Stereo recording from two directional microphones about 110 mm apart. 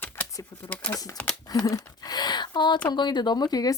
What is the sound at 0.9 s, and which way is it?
Speech, 30° left (ahead or behind).